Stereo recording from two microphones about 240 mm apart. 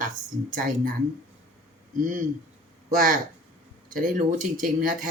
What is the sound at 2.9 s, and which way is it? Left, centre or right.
Speech, right.